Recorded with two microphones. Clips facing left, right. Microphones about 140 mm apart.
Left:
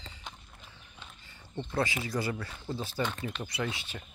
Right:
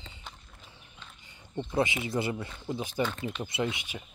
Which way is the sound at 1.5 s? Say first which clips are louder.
Right 3 dB; 20° right (ahead or behind).